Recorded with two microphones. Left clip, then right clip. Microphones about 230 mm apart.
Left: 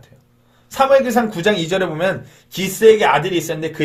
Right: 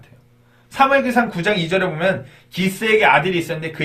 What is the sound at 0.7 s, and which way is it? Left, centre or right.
Speech, left.